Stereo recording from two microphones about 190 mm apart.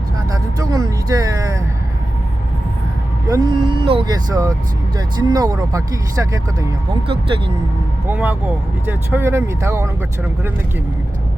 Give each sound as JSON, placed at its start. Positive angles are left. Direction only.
{"t": 0.3, "sound": "speech", "side_deg": -20}
{"t": 3.2, "sound": "speech", "side_deg": -20}
{"t": 8.0, "sound": "speech", "side_deg": -10}